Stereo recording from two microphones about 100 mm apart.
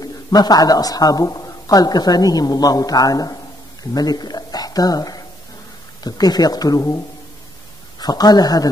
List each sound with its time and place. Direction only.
0.0 s a woman's voice: 40° left (ahead or behind)
8.0 s a woman's voice: 40° left (ahead or behind)